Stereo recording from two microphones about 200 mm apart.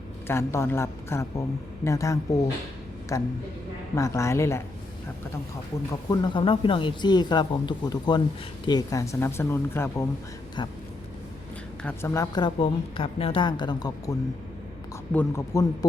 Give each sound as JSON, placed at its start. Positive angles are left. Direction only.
{"t": 0.3, "sound": "speech", "side_deg": 15}
{"t": 6.1, "sound": "a woman's voice", "side_deg": 25}
{"t": 10.6, "sound": "a woman's voice", "side_deg": 25}
{"t": 11.8, "sound": "a woman's voice", "side_deg": 10}